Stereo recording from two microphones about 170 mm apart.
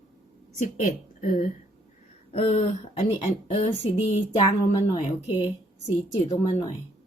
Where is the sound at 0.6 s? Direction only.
45° left (ahead or behind).